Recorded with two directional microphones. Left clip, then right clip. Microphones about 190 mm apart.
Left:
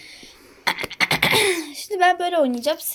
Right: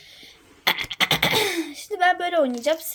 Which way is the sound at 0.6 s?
15° right (ahead or behind).